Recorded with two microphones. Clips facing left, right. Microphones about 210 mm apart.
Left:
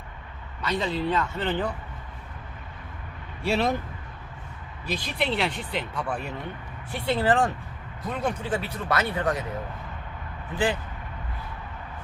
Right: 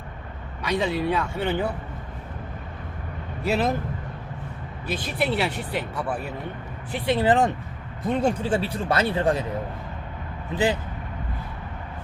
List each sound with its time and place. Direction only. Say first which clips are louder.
0.6 s speech: right 3 dB; 10° right (ahead or behind)
3.4 s speech: right 1 dB; centre (ahead or behind)
4.9 s speech: right 2 dB; 5° right (ahead or behind)
6.9 s speech: right 3 dB; 15° right (ahead or behind)